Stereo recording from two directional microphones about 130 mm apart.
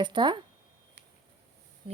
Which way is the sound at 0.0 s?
35° right (ahead or behind).